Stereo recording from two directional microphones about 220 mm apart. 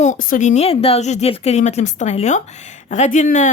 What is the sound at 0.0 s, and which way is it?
A woman's voice, 35° left (ahead or behind).